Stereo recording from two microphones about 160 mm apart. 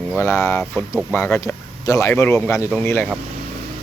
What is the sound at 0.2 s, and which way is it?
Speech, 15° left (ahead or behind).